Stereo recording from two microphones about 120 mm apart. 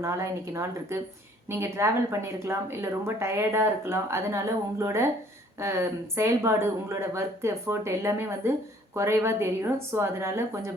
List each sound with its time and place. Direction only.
0.0 s a woman's voice: 25° right (ahead or behind)